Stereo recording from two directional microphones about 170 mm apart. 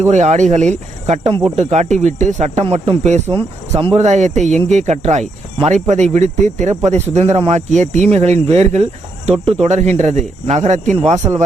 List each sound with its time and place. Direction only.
0.1 s speech: 45° right (ahead or behind)